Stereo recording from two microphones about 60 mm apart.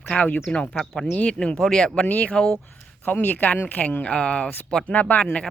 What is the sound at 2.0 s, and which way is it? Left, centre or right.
Speech, left.